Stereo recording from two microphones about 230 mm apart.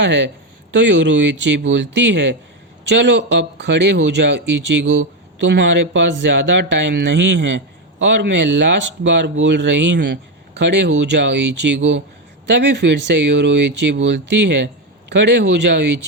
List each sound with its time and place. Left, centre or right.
0.0 s speech: right